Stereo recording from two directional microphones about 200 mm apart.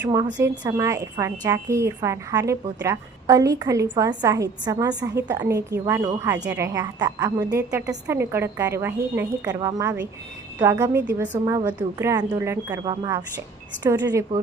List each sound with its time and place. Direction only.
0.0 s a woman's voice: 15° right (ahead or behind)